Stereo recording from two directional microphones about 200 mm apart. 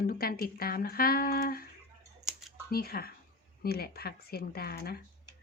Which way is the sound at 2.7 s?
50° left (ahead or behind).